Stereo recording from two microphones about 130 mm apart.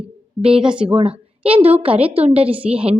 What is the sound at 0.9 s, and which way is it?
A woman's voice, 45° right (ahead or behind).